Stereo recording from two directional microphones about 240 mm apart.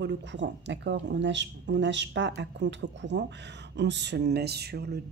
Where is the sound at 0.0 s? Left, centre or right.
Right.